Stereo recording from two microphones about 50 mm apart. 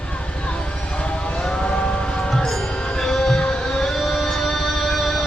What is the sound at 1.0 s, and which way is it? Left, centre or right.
Vehicle, centre.